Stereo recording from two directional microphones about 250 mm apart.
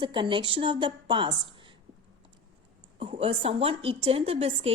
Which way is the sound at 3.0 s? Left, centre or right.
Right.